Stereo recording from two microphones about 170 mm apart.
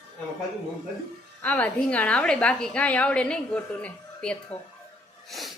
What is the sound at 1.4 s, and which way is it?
A woman's voice, 10° left (ahead or behind).